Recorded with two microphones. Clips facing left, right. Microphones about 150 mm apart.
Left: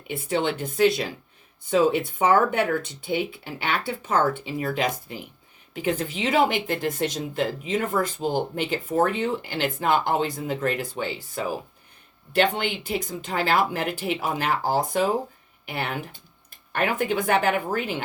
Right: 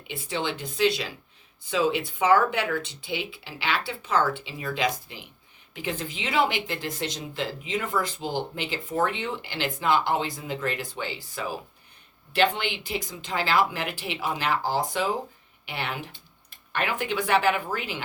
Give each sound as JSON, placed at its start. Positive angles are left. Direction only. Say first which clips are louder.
{"t": 0.1, "sound": "speech", "louder": "left 5 dB", "side_deg": 45}